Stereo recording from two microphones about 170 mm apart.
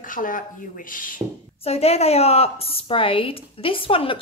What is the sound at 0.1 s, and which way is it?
Speech, 50° left (ahead or behind).